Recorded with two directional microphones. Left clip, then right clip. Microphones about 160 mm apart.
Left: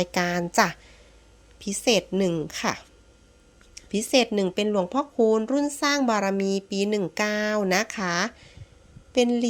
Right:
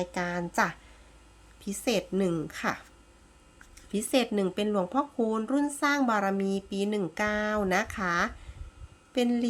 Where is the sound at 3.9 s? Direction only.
25° left (ahead or behind).